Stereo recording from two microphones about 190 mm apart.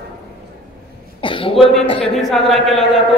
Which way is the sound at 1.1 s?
25° left (ahead or behind).